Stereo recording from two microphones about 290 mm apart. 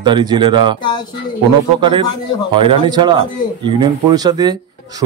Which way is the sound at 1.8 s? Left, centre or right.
Centre.